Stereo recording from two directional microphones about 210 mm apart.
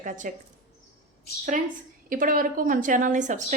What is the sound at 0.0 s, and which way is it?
Speech, 40° right (ahead or behind).